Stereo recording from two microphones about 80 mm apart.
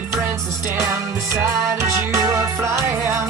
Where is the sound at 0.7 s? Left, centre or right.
Right.